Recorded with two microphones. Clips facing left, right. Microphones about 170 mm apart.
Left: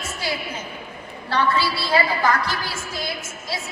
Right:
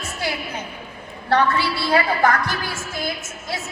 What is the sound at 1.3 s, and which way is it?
A woman's voice, 60° right (ahead or behind).